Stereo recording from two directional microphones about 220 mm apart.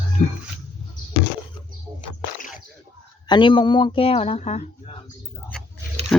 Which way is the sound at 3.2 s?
20° left (ahead or behind).